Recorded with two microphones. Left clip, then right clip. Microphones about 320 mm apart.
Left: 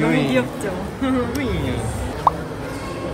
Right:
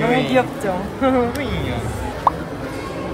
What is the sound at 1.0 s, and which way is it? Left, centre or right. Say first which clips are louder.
Speech: right 5 dB; centre.